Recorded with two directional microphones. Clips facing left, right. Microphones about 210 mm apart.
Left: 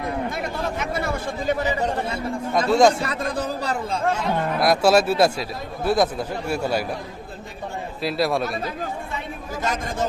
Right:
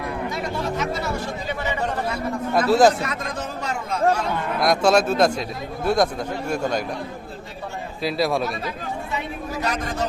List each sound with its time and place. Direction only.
0.3 s chatter: 55° left (ahead or behind)
1.8 s speech: 25° left (ahead or behind)
2.6 s speech: 5° right (ahead or behind)
3.0 s speech: 35° left (ahead or behind)
4.6 s a man's voice: 5° left (ahead or behind)
8.0 s speech: centre (ahead or behind)